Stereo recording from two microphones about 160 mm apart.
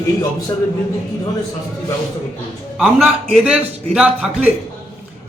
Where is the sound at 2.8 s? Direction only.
Centre (ahead or behind).